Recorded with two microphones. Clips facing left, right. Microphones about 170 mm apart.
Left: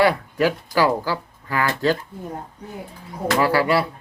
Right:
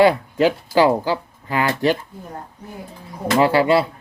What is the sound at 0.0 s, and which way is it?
Speech, 25° right (ahead or behind).